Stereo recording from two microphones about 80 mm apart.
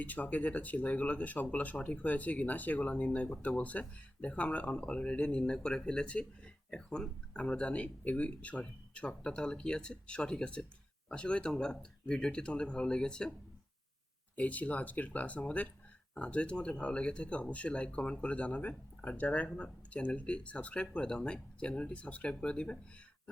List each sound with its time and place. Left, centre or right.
0.0 s speech: centre
14.3 s speech: centre